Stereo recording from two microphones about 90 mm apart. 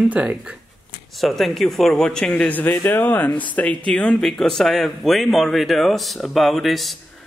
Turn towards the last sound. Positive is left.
turn(degrees=0)  # may be behind; listen again after turning